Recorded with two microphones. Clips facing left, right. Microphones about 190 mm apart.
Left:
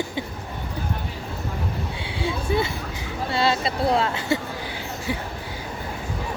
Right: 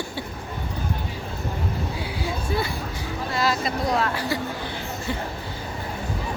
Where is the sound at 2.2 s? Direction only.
25° left (ahead or behind).